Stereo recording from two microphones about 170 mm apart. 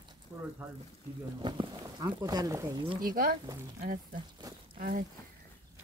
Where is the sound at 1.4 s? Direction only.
25° right (ahead or behind).